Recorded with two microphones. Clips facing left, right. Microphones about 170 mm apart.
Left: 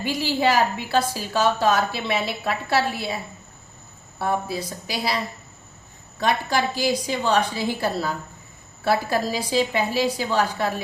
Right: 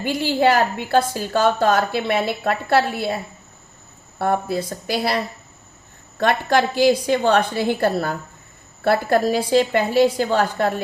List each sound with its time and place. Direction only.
0.0 s a woman's voice: 55° right (ahead or behind)
4.2 s a woman's voice: 55° right (ahead or behind)